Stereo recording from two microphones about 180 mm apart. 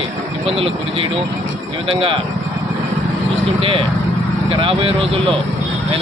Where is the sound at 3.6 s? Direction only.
30° right (ahead or behind).